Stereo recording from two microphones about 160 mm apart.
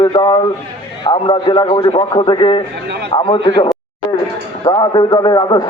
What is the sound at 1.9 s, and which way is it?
A man's voice, 30° left (ahead or behind).